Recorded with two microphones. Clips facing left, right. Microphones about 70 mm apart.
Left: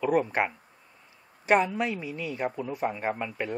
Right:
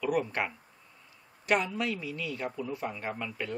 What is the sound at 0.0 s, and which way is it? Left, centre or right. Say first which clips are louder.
A man's voice: left 5 dB; left.